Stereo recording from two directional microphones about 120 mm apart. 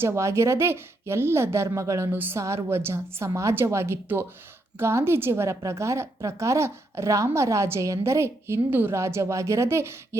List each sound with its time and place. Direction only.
0.0 s a woman's voice: 25° right (ahead or behind)